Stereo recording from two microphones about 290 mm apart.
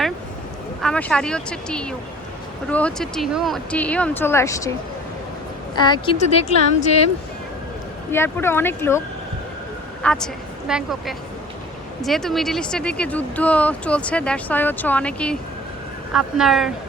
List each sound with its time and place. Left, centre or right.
0.8 s speech: centre
5.7 s speech: centre
8.1 s speech: centre
10.0 s speech: centre